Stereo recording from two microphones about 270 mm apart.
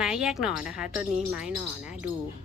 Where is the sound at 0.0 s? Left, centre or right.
Centre.